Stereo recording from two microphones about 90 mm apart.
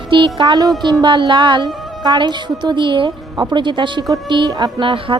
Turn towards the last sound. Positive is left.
turn(degrees=-70)  # may be behind; listen again after turning